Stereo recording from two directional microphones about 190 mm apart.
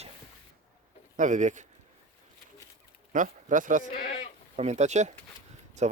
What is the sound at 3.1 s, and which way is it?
A man's voice, 45° right (ahead or behind).